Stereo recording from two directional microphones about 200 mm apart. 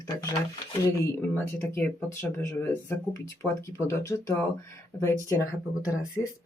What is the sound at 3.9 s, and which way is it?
Speech, 15° left (ahead or behind).